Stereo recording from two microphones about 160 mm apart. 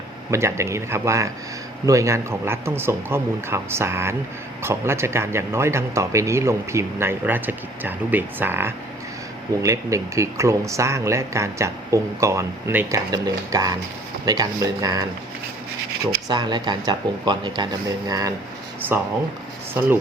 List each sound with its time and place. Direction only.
0.3 s speech: 15° right (ahead or behind)
16.3 s speech: 25° right (ahead or behind)